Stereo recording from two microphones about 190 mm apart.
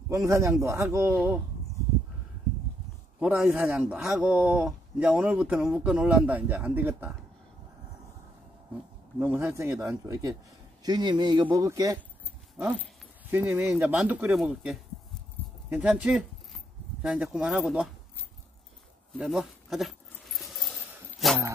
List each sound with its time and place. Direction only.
0.1 s a man's voice: 15° right (ahead or behind)
3.2 s a man's voice: 10° right (ahead or behind)
9.2 s a man's voice: 15° right (ahead or behind)
12.5 s a man's voice: 5° right (ahead or behind)
19.1 s keys jangling: centre (ahead or behind)